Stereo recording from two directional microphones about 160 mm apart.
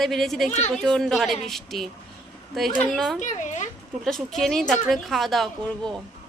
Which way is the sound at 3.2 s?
50° left (ahead or behind).